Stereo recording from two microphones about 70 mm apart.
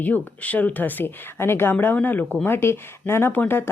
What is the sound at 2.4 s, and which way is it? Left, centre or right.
Speech, left.